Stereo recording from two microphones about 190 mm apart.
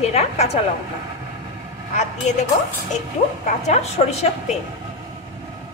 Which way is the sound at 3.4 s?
40° left (ahead or behind).